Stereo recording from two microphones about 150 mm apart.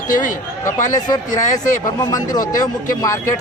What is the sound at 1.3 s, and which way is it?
Speech, 55° left (ahead or behind).